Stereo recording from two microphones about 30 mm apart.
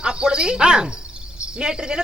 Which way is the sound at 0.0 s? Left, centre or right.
Right.